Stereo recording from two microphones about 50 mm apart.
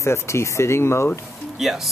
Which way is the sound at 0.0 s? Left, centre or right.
Left.